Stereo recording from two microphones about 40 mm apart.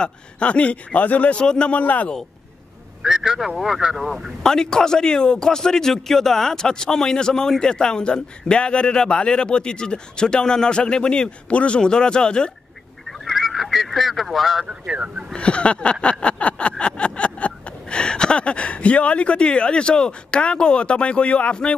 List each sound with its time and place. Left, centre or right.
0.0 s speech: left
1.4 s a man's voice: left
1.7 s speech: left
3.0 s speech: centre
4.4 s a man's voice: centre; by 11.8 s left
11.8 s a man's voice: left
13.2 s fowl: centre
14.7 s speech: right
15.3 s a sound: left